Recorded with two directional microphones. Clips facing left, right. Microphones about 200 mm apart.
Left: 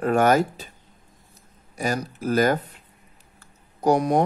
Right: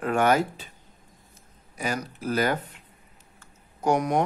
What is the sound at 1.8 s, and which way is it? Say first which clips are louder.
A man's voice: left 4 dB; 40° left (ahead or behind).